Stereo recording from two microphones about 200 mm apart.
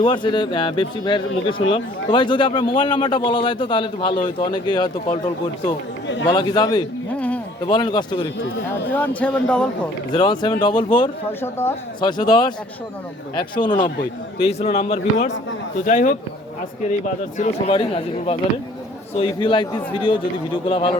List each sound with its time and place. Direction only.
0.0 s a man's voice: 25° left (ahead or behind)
6.3 s a man's voice: 20° left (ahead or behind)
7.2 s a sound: 5° left (ahead or behind)
7.7 s a man's voice: 20° left (ahead or behind)
8.9 s speech: 10° left (ahead or behind)
10.1 s a man's voice: 20° left (ahead or behind)
11.3 s a man's voice: 10° left (ahead or behind); by 16.1 s 40° left (ahead or behind)
17.3 s a man's voice: 35° left (ahead or behind)